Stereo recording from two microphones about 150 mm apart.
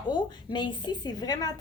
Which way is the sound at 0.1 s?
30° left (ahead or behind).